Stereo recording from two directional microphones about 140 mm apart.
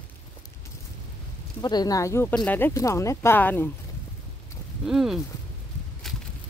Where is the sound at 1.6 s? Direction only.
30° left (ahead or behind).